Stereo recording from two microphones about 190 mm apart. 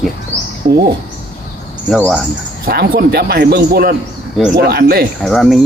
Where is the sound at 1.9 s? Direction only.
Centre (ahead or behind).